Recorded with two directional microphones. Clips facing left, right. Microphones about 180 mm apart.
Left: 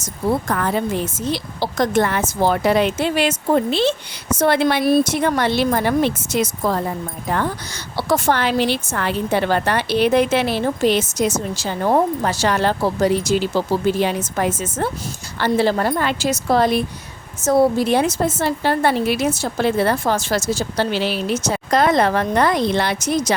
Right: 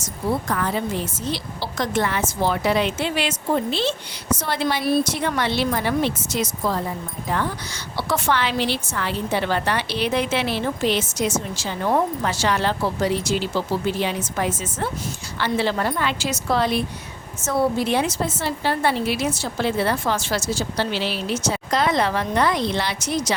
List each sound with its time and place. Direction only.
0.4 s a woman's voice: 55° left (ahead or behind)
4.8 s a woman's voice: 45° left (ahead or behind)
7.9 s a woman's voice: 40° left (ahead or behind)